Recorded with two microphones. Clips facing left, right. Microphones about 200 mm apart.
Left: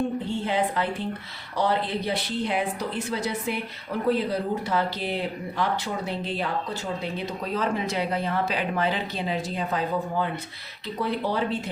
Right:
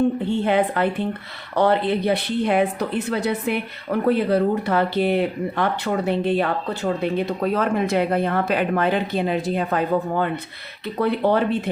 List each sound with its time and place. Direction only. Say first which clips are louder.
0.4 s a woman's voice: right 7 dB; 60° right (ahead or behind)